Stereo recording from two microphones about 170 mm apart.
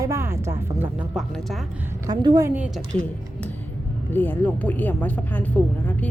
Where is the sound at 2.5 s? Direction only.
10° right (ahead or behind).